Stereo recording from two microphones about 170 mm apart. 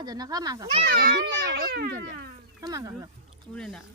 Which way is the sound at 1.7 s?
65° right (ahead or behind).